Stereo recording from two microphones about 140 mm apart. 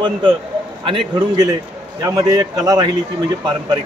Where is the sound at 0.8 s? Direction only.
35° right (ahead or behind).